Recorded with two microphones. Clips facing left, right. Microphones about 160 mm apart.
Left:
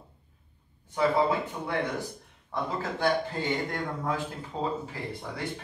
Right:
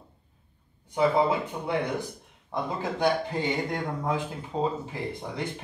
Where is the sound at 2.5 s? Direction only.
15° right (ahead or behind).